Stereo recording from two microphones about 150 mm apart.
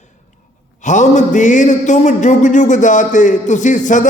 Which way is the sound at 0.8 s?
55° left (ahead or behind).